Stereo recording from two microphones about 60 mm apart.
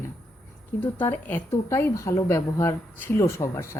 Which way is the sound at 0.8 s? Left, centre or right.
Left.